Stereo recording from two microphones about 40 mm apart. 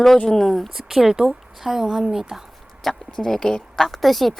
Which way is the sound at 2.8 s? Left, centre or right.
Centre.